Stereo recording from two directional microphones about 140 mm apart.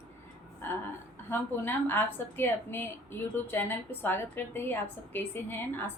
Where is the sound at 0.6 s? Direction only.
15° left (ahead or behind).